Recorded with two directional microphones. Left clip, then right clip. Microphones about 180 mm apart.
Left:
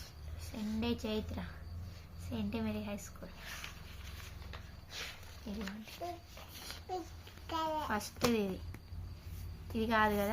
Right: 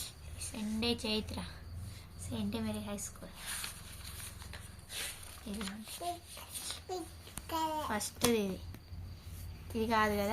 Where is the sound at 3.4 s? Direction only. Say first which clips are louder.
Right 4 dB; centre (ahead or behind).